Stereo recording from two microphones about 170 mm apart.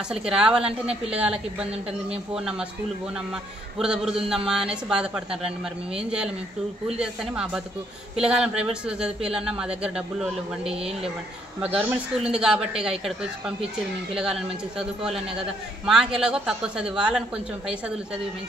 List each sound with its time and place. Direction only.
0.1 s a man's voice: 5° right (ahead or behind)
3.7 s a man's voice: 5° right (ahead or behind)
15.8 s a man's voice: 5° right (ahead or behind)